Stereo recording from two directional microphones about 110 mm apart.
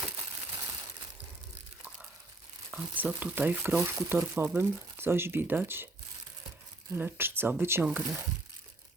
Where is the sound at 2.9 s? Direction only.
15° right (ahead or behind).